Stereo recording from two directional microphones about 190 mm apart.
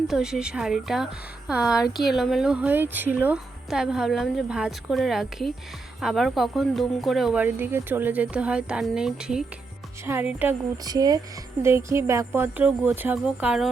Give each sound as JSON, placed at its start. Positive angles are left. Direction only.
{"t": 0.1, "sound": "a woman's voice", "side_deg": -5}